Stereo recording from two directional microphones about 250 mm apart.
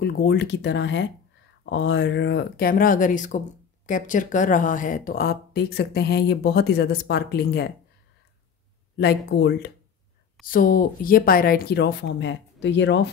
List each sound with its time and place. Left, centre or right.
0.0 s speech: left
8.9 s speech: left